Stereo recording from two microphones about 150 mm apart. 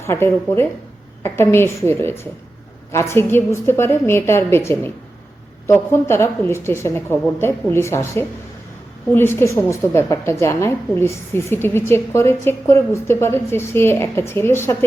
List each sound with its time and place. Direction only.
0.0 s a woman's voice: 15° left (ahead or behind)